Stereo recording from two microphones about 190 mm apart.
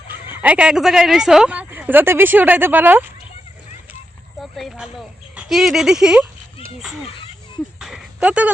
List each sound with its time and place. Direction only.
0.4 s speech: 5° right (ahead or behind)
4.5 s speech: centre (ahead or behind)
7.8 s a sound: centre (ahead or behind)